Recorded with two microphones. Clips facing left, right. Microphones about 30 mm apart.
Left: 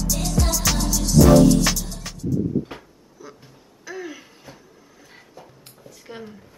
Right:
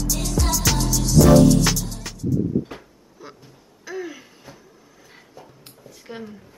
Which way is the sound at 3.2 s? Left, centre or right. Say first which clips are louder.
Even; right.